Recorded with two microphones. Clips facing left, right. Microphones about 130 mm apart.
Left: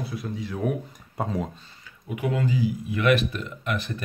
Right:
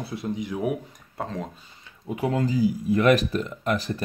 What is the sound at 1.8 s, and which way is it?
Speech, 30° right (ahead or behind).